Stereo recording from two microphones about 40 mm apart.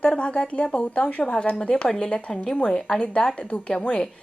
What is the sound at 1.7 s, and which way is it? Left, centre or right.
A woman's voice, centre.